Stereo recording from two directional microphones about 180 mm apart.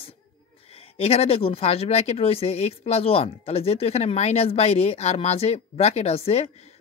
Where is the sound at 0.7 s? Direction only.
35° left (ahead or behind).